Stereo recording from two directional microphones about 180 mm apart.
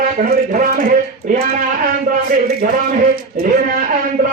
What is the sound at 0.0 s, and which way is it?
Speech, 50° right (ahead or behind).